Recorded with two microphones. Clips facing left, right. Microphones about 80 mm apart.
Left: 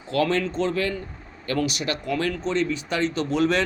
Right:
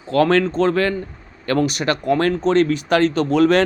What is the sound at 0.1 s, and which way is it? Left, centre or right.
Speech, right.